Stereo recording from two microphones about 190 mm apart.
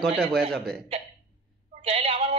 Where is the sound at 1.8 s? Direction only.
30° right (ahead or behind).